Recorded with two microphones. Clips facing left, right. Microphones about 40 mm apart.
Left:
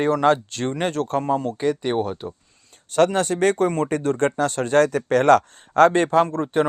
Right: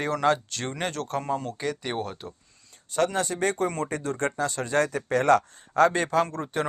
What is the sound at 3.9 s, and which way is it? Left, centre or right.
Speech, left.